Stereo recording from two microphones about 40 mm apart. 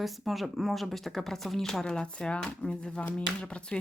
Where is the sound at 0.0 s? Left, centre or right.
Centre.